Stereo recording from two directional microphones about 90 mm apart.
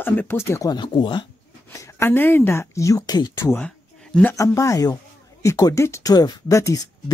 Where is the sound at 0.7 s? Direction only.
60° left (ahead or behind).